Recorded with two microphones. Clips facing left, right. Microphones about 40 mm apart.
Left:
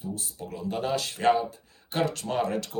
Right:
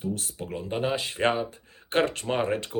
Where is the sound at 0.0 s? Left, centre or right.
Right.